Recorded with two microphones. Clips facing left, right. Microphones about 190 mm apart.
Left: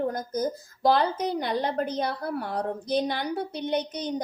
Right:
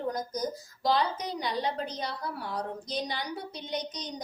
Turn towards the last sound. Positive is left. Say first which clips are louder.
# left 8 dB
turn(degrees=55)  # may be behind; listen again after turning